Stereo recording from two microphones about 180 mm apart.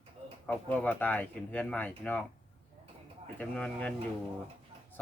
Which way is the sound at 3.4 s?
5° left (ahead or behind).